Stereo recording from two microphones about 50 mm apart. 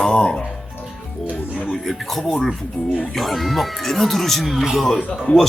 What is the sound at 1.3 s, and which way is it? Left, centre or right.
Music, left.